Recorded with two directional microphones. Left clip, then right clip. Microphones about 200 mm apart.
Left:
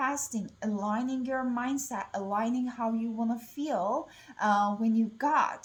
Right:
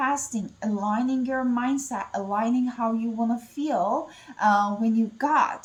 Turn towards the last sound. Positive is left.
turn(degrees=20)  # may be behind; listen again after turning